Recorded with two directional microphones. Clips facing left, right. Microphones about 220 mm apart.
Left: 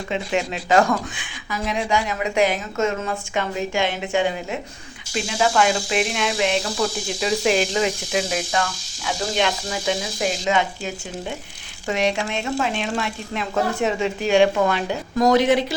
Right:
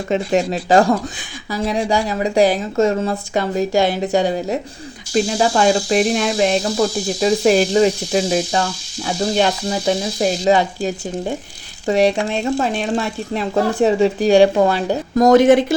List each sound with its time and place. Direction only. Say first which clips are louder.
0.1 s speech: right 7 dB; 40° right (ahead or behind)